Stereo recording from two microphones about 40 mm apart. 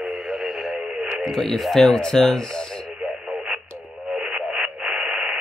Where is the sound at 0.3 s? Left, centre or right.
Centre.